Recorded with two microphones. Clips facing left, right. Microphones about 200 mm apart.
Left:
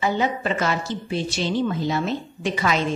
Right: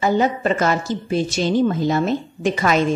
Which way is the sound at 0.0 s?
45° right (ahead or behind).